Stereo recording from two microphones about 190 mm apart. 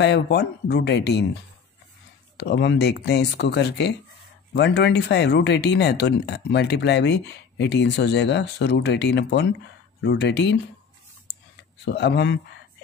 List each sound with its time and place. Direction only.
0.0 s speech: 60° left (ahead or behind)
11.8 s speech: 65° left (ahead or behind)